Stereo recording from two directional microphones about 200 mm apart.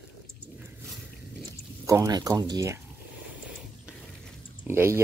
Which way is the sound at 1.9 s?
15° right (ahead or behind).